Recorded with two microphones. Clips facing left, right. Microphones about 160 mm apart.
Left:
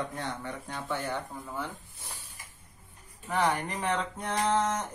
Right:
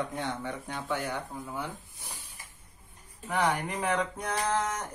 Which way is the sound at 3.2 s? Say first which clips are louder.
Even; 10° right (ahead or behind).